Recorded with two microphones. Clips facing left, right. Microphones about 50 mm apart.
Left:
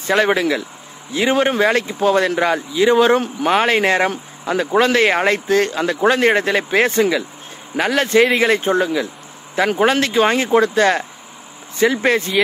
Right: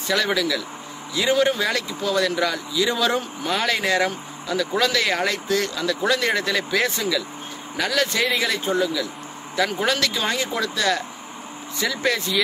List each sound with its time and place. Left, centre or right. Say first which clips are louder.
0.0 s speech: left 6 dB; left